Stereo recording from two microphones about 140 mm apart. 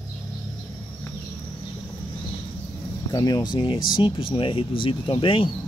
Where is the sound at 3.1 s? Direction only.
25° left (ahead or behind).